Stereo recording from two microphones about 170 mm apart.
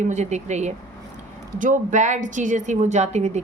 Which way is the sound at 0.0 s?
45° right (ahead or behind).